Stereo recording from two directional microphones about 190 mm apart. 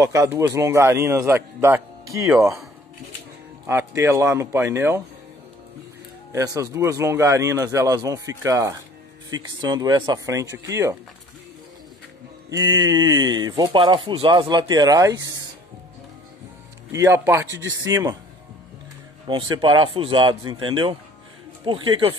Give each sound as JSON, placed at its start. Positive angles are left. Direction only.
{"t": 0.0, "sound": "speech", "side_deg": -15}
{"t": 3.6, "sound": "speech", "side_deg": -15}
{"t": 6.3, "sound": "speech", "side_deg": -15}
{"t": 12.4, "sound": "speech", "side_deg": -20}
{"t": 16.9, "sound": "speech", "side_deg": -15}
{"t": 19.2, "sound": "speech", "side_deg": -25}